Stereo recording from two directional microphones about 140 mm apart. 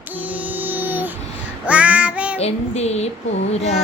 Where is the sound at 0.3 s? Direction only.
10° right (ahead or behind).